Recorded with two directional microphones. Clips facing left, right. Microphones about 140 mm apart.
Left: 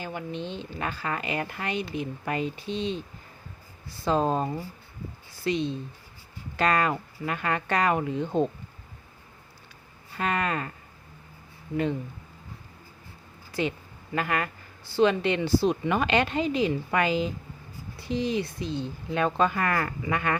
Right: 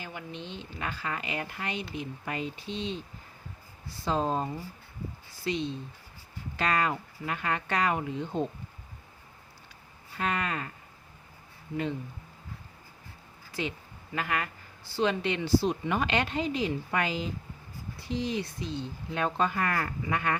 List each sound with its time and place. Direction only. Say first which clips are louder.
0.0 s a woman's voice: left 7 dB; 40° left (ahead or behind)
4.0 s speech: left 4 dB; 65° left (ahead or behind)
5.5 s speech: left 4 dB; 55° left (ahead or behind)
10.2 s a woman's voice: left 4 dB; 55° left (ahead or behind)
13.6 s a woman's voice: left 6 dB; 50° left (ahead or behind)
14.9 s speech: left 6 dB; 60° left (ahead or behind); by 17.2 s 85° left
18.1 s speech: left 4 dB; 65° left (ahead or behind)
19.1 s speech: left 4 dB; 90° left